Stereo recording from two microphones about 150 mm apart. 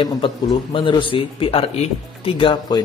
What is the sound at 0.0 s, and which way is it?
Speech, 35° left (ahead or behind).